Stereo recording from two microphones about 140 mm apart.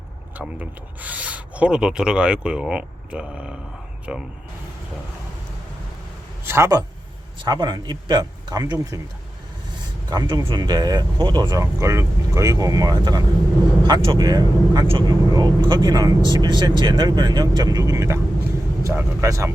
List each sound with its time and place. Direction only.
0.3 s speech: 10° right (ahead or behind)
6.4 s a man's voice: 20° right (ahead or behind)
10.1 s speech: 30° right (ahead or behind)